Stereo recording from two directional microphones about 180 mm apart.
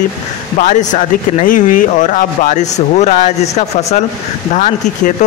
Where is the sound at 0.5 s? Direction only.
45° left (ahead or behind).